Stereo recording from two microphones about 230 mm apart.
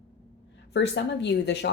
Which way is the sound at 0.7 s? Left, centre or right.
Left.